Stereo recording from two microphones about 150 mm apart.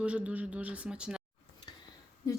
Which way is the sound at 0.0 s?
10° right (ahead or behind).